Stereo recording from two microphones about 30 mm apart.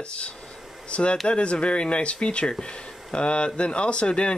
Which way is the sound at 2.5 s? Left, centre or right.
Left.